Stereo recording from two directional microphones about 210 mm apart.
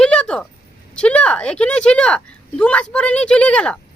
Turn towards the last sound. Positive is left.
turn(degrees=5)  # may be behind; listen again after turning